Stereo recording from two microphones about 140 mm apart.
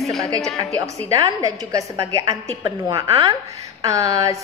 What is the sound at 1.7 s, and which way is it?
A woman's voice, 25° right (ahead or behind).